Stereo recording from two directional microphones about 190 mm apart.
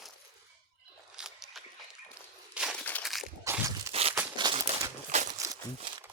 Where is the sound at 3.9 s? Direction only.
30° right (ahead or behind).